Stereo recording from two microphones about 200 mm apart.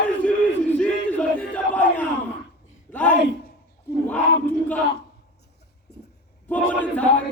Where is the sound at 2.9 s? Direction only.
10° left (ahead or behind).